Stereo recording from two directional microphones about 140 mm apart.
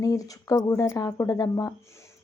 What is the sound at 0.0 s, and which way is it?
A woman's voice, 25° left (ahead or behind).